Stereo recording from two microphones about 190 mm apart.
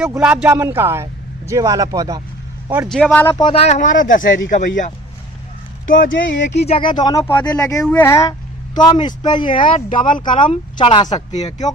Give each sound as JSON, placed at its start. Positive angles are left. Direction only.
{"t": 0.4, "sound": "a man's voice", "side_deg": -10}
{"t": 2.9, "sound": "speech", "side_deg": 5}
{"t": 3.3, "sound": "speech", "side_deg": 25}
{"t": 6.1, "sound": "speech", "side_deg": 75}
{"t": 6.7, "sound": "speech", "side_deg": 25}